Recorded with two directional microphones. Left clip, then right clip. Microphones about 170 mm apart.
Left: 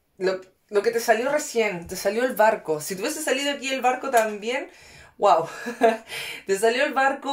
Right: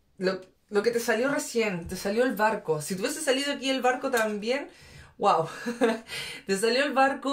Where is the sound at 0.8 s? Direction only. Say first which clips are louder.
Left 4 dB; 35° left (ahead or behind).